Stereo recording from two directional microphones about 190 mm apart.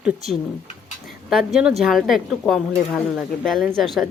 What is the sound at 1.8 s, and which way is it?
Speech, centre (ahead or behind).